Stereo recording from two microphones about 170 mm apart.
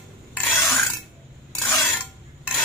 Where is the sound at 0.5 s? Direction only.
Centre (ahead or behind).